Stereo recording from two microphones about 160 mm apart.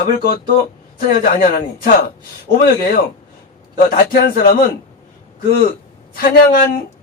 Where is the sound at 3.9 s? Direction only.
60° left (ahead or behind).